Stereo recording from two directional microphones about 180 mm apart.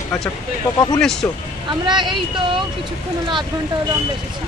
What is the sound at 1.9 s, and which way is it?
Speech, 25° right (ahead or behind).